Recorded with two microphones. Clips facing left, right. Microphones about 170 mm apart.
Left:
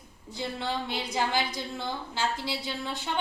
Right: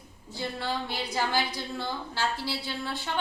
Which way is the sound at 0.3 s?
20° left (ahead or behind).